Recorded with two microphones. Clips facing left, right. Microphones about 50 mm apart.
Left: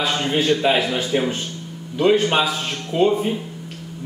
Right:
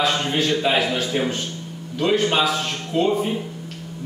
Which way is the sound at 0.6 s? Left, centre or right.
Centre.